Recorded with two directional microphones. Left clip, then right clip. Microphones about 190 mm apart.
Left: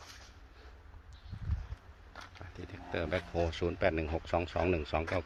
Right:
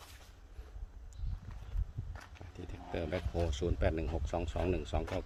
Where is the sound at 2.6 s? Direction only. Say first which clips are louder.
Left 3 dB; 15° right (ahead or behind).